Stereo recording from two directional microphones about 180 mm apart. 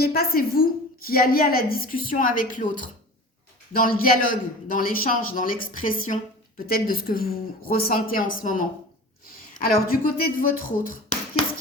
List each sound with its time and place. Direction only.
0.0 s a woman's voice: 60° left (ahead or behind)